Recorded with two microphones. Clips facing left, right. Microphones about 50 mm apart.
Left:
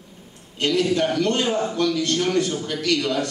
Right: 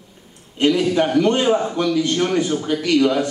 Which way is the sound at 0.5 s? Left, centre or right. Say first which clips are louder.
Right 4 dB; centre.